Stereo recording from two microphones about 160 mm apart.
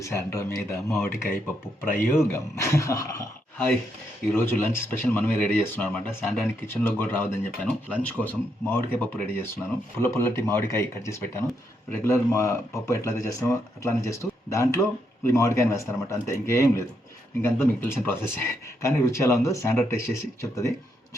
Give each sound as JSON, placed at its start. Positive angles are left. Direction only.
{"t": 0.0, "sound": "speech", "side_deg": 15}